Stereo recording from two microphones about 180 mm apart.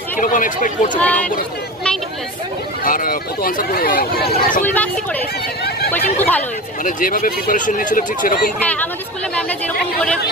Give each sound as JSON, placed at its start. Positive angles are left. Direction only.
{"t": 0.2, "sound": "speech", "side_deg": 45}
{"t": 0.9, "sound": "speech", "side_deg": 10}
{"t": 2.8, "sound": "speech", "side_deg": 50}
{"t": 4.6, "sound": "speech", "side_deg": 10}
{"t": 5.9, "sound": "speech", "side_deg": 10}
{"t": 6.8, "sound": "speech", "side_deg": 50}
{"t": 8.6, "sound": "speech", "side_deg": 10}